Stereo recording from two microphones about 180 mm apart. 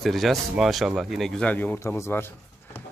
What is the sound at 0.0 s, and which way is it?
Speech, centre (ahead or behind).